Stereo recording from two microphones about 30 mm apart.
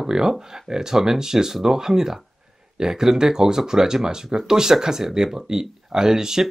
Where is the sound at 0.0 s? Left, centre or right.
Right.